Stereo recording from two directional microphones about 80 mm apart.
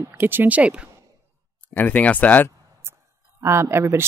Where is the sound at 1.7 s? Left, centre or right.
Centre.